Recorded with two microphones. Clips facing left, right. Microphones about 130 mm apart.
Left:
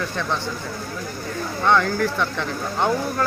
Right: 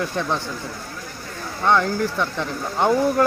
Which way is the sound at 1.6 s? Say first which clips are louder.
Even; 10° right (ahead or behind).